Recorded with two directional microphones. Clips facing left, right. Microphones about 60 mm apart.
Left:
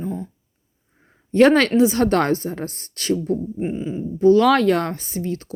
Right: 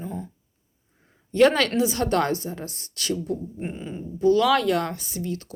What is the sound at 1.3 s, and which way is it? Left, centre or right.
A woman's voice, left.